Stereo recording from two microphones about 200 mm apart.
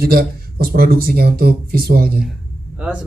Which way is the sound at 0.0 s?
50° right (ahead or behind).